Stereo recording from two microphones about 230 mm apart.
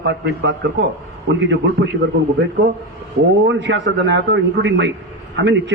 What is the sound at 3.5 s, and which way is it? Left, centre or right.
A man's voice, right.